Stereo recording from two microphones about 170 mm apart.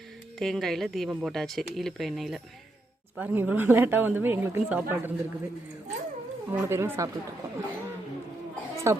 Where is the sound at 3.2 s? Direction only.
10° right (ahead or behind).